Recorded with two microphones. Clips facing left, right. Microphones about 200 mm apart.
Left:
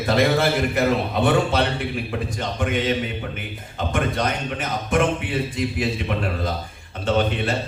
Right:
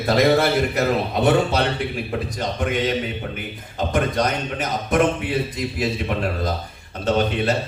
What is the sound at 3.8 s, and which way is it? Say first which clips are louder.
A man's voice: right 2 dB; 40° right (ahead or behind).